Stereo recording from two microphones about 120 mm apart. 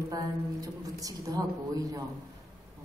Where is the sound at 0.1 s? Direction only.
30° right (ahead or behind).